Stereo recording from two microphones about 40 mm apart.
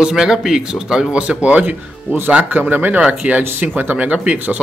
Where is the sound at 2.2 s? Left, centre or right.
Right.